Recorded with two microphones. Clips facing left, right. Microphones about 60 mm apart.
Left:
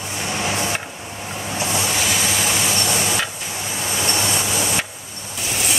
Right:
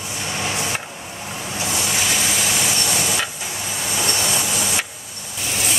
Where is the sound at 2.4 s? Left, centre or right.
Left.